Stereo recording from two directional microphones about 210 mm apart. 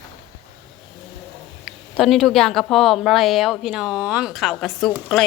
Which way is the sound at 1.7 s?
Centre (ahead or behind).